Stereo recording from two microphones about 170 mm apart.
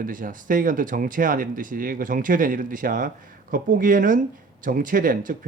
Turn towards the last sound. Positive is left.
turn(degrees=-55)  # may be behind; listen again after turning